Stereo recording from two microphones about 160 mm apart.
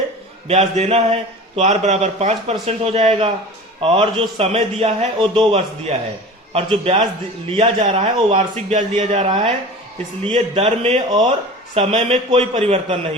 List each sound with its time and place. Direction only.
0.4 s a man's voice: 40° right (ahead or behind)